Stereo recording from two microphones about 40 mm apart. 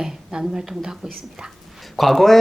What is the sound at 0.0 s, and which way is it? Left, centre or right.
Speech, centre.